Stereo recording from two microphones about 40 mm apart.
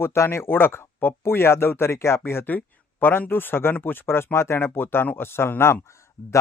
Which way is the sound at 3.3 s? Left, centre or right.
Left.